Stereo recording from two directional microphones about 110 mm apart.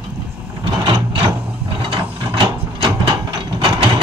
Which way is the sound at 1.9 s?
50° right (ahead or behind).